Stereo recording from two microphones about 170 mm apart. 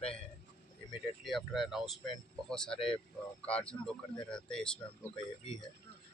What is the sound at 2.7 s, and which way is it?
Speech, 35° left (ahead or behind).